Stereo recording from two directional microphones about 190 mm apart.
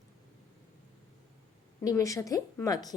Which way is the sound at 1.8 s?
15° left (ahead or behind).